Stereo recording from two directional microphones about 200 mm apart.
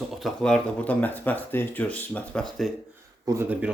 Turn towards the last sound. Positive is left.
turn(degrees=-5)  # may be behind; listen again after turning